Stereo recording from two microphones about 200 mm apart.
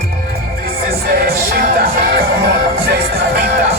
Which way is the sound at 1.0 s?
50° right (ahead or behind).